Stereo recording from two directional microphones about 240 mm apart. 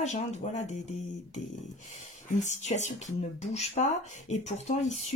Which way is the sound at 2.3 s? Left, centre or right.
Left.